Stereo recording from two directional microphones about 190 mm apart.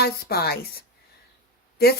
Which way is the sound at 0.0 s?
55° left (ahead or behind).